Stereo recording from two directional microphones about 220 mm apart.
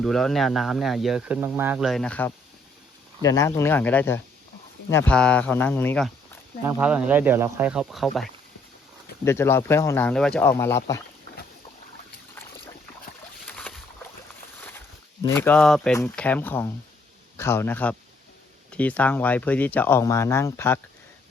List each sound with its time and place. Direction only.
0.0 s speech: centre (ahead or behind)
6.7 s speech: 5° right (ahead or behind)
9.2 s speech: 10° left (ahead or behind)
15.2 s a man's voice: 10° left (ahead or behind)